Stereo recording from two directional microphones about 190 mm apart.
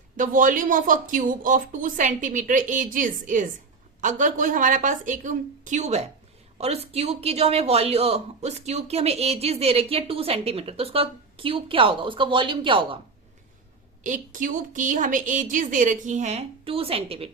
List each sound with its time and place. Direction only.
0.2 s speech: 45° right (ahead or behind); by 13.0 s 25° right (ahead or behind)
14.0 s speech: 40° right (ahead or behind)